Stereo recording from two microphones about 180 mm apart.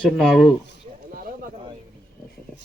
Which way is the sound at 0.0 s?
Centre (ahead or behind).